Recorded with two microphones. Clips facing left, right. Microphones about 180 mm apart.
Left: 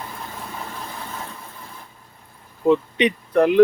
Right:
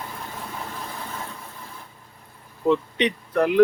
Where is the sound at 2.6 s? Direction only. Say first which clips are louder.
Left 3 dB; 10° left (ahead or behind).